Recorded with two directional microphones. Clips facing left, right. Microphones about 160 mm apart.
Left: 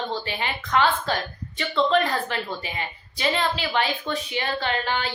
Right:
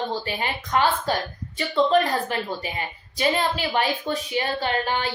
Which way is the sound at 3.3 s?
40° right (ahead or behind).